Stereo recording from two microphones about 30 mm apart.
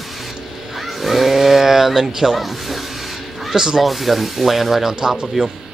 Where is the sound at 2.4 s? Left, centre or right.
Centre.